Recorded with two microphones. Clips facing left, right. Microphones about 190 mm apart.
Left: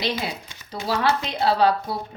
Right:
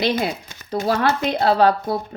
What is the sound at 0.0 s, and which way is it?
Speech, 50° right (ahead or behind).